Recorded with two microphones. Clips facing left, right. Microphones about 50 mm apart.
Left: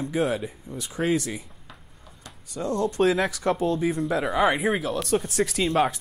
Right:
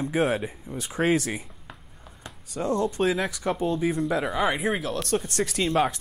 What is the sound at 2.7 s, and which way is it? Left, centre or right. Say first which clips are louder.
Speech: left 2 dB; centre.